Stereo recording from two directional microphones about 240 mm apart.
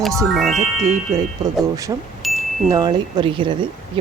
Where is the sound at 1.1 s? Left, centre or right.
Centre.